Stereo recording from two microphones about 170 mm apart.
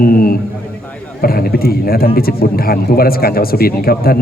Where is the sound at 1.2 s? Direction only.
60° left (ahead or behind).